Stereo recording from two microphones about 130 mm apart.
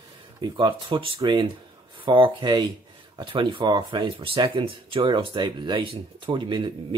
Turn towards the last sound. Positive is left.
turn(degrees=-40)  # may be behind; listen again after turning